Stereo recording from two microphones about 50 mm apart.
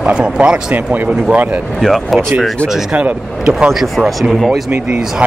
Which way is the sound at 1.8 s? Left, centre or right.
Centre.